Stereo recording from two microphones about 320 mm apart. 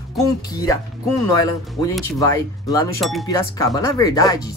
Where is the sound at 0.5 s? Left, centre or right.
Centre.